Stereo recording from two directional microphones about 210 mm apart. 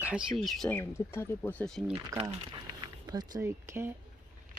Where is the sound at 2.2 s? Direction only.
25° right (ahead or behind).